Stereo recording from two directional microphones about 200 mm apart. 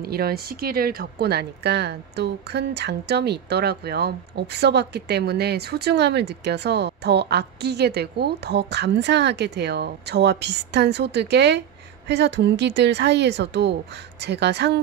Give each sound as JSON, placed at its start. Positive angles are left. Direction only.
{"t": 0.0, "sound": "speech", "side_deg": -50}